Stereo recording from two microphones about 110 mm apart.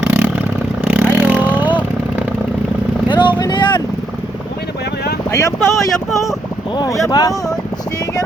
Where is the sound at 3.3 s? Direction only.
45° left (ahead or behind).